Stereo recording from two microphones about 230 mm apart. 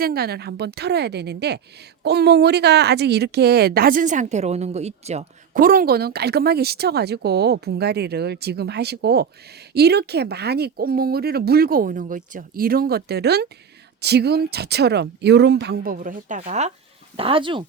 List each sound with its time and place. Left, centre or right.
0.0 s speech: right